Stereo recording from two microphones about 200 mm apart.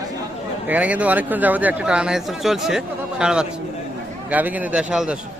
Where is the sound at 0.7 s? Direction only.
5° right (ahead or behind).